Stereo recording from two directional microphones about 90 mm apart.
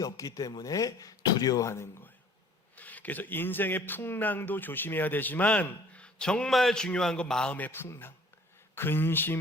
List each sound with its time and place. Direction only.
0.0 s speech: 40° left (ahead or behind)
2.7 s speech: 15° left (ahead or behind)
7.5 s speech: 20° left (ahead or behind)